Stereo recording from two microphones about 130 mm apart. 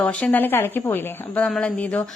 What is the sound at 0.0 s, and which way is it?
A woman's voice, 10° left (ahead or behind).